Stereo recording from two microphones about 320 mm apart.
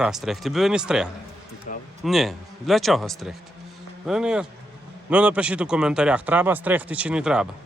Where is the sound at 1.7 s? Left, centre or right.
Left.